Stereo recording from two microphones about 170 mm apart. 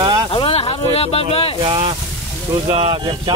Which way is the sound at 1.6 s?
30° right (ahead or behind).